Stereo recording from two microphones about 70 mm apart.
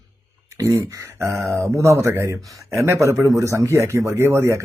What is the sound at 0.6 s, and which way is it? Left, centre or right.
A man's voice, right.